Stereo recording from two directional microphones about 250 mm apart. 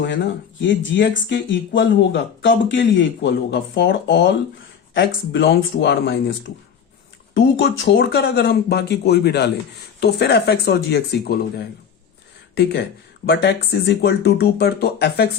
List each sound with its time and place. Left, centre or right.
0.0 s speech: left
7.3 s speech: left
13.2 s speech: left